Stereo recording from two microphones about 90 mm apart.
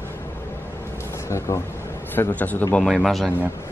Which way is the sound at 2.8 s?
Centre (ahead or behind).